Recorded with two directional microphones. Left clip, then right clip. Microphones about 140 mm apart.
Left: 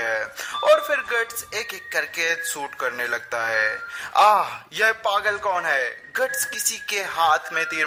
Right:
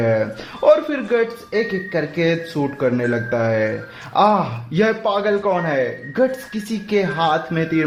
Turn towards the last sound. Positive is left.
turn(degrees=45)  # may be behind; listen again after turning